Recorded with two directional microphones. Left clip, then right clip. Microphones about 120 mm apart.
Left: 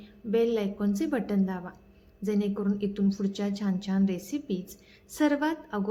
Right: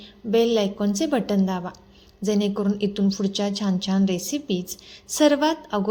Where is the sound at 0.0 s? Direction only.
25° right (ahead or behind).